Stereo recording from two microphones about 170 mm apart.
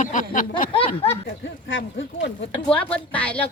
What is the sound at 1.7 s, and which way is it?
Speech, 90° left.